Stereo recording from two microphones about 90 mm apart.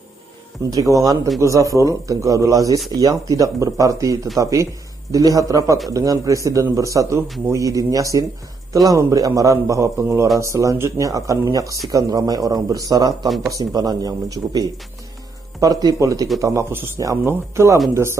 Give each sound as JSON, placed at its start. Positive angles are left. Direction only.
{"t": 0.7, "sound": "a man's voice", "side_deg": -40}
{"t": 7.2, "sound": "a man's voice", "side_deg": 0}
{"t": 7.5, "sound": "a man's voice", "side_deg": -40}
{"t": 16.7, "sound": "speech", "side_deg": -25}